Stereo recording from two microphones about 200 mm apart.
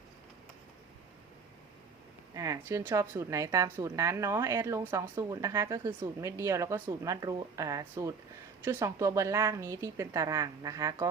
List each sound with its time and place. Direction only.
2.3 s a woman's voice: 15° right (ahead or behind)